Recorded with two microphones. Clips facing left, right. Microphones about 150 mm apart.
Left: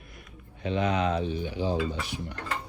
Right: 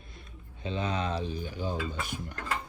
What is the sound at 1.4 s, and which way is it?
Speech, 45° right (ahead or behind).